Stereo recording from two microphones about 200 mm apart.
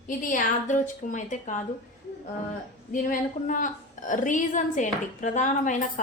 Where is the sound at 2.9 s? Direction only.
40° left (ahead or behind).